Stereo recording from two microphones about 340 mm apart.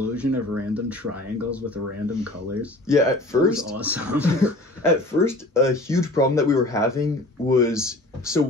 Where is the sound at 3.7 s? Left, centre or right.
Centre.